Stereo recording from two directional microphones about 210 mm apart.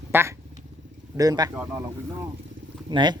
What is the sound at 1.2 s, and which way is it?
Speech, 15° right (ahead or behind).